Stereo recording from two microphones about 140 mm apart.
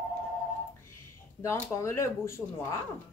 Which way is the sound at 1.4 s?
20° left (ahead or behind).